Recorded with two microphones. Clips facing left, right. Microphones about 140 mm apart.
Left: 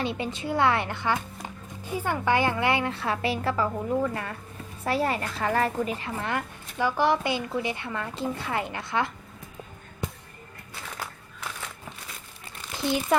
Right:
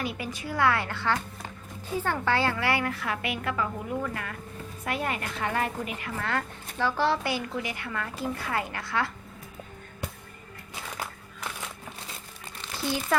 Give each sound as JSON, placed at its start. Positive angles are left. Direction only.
{"t": 0.0, "sound": "a woman's voice", "side_deg": 25}
{"t": 12.7, "sound": "crumpling", "side_deg": 20}